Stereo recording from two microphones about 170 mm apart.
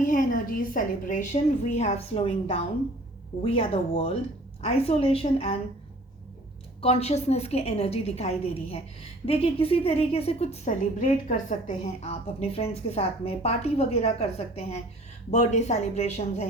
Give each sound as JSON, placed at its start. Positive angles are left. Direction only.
{"t": 0.0, "sound": "a woman's voice", "side_deg": 50}
{"t": 6.8, "sound": "a woman's voice", "side_deg": 40}